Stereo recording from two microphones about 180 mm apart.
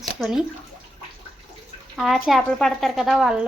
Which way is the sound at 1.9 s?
Centre (ahead or behind).